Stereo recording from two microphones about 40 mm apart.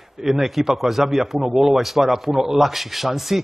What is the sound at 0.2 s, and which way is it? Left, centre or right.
Speech, centre.